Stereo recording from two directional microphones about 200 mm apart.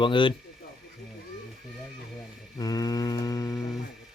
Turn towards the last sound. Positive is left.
turn(degrees=15)  # may be behind; listen again after turning